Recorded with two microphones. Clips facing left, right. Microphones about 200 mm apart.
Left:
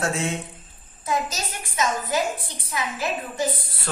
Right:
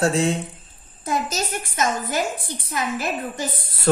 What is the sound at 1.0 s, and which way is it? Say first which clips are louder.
A woman's voice: right 2 dB; 55° right (ahead or behind).